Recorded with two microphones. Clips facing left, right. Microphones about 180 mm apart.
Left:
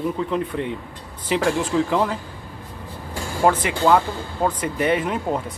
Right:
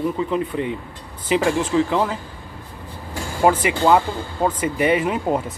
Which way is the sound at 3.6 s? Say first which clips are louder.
Right 1 dB; 5° right (ahead or behind).